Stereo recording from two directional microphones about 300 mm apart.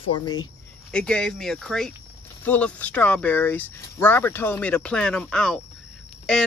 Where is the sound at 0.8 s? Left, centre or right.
Centre.